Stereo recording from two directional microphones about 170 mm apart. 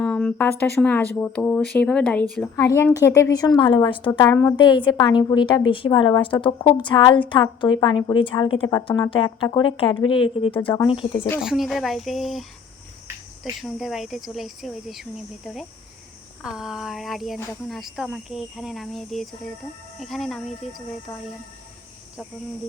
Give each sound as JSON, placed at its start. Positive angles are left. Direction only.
{"t": 0.0, "sound": "a sound", "side_deg": 10}
{"t": 0.8, "sound": "speech", "side_deg": 10}
{"t": 2.6, "sound": "speech", "side_deg": 15}
{"t": 11.3, "sound": "speech", "side_deg": 0}
{"t": 16.4, "sound": "speech", "side_deg": -5}
{"t": 21.1, "sound": "speech", "side_deg": 15}